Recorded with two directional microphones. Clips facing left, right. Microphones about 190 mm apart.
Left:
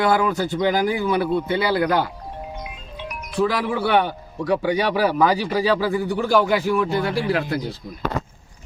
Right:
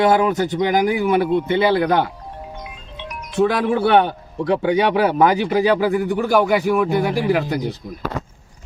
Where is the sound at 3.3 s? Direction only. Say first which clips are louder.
Right 4 dB; 25° right (ahead or behind).